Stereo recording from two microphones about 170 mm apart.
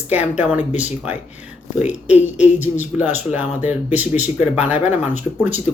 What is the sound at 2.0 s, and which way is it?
Speech, 10° right (ahead or behind).